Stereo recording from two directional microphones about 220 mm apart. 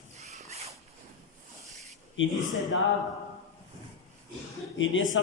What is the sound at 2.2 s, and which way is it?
Speech, 60° left (ahead or behind).